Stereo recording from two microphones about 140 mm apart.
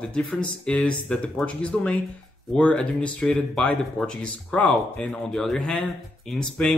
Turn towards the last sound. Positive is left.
turn(degrees=5)  # may be behind; listen again after turning